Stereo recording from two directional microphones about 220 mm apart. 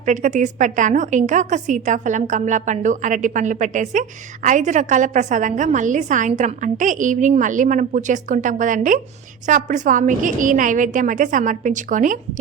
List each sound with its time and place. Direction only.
0.0 s a woman's voice: 35° right (ahead or behind)